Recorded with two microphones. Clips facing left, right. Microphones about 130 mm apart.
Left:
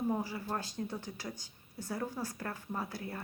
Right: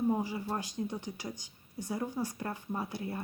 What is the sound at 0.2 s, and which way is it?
A woman's voice, 20° right (ahead or behind).